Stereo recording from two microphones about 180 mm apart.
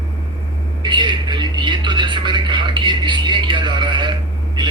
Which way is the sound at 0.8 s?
25° right (ahead or behind).